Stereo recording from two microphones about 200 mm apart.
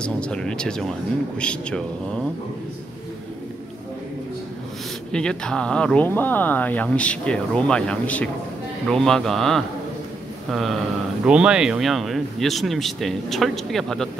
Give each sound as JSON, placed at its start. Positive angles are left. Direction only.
{"t": 0.0, "sound": "speech", "side_deg": 5}
{"t": 5.1, "sound": "speech", "side_deg": 5}